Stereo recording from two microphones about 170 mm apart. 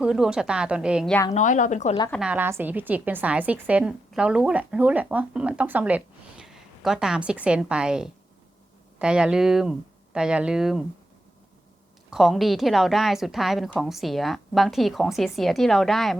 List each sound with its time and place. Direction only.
0.0 s a woman's voice: 5° right (ahead or behind)
1.3 s speech: 45° left (ahead or behind)
2.1 s a woman's voice: 5° right (ahead or behind)
12.1 s a woman's voice: centre (ahead or behind)